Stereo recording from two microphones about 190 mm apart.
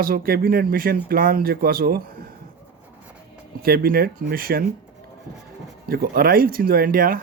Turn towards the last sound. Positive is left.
turn(degrees=-50)  # may be behind; listen again after turning